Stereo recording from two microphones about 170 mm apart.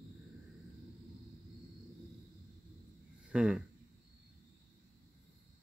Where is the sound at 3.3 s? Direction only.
5° right (ahead or behind).